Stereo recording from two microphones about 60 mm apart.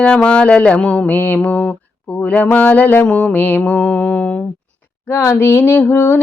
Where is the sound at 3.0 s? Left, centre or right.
Centre.